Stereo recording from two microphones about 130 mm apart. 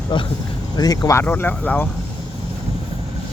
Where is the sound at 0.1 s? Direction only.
35° left (ahead or behind).